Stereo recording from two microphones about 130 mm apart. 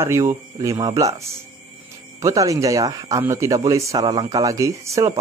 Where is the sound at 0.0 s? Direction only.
20° right (ahead or behind).